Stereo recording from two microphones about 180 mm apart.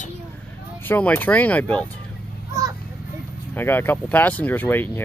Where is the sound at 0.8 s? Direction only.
10° left (ahead or behind).